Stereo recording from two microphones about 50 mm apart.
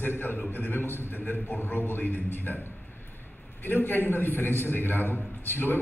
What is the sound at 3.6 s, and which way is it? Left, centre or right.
A man's voice, left.